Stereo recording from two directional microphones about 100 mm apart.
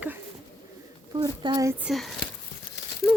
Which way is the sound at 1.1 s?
40° right (ahead or behind).